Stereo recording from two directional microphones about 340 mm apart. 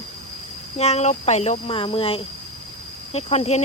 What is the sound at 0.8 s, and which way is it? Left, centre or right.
Speech, centre.